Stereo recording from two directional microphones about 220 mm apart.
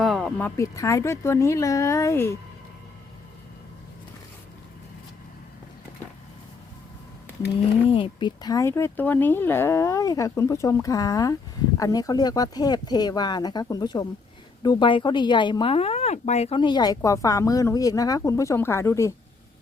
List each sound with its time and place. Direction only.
0.0 s speech: centre (ahead or behind)
7.9 s speech: 25° left (ahead or behind)